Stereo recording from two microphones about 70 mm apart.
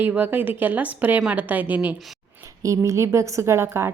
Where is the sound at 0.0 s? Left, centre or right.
Right.